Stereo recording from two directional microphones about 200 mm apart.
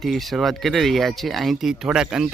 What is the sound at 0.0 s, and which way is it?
Speech, centre (ahead or behind).